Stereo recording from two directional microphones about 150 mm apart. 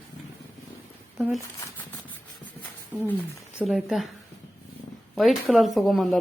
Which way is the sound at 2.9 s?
15° right (ahead or behind).